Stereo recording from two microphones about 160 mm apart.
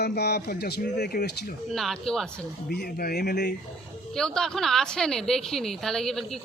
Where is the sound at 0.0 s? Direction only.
90° left.